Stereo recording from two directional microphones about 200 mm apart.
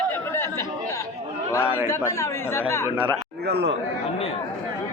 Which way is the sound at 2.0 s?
15° left (ahead or behind).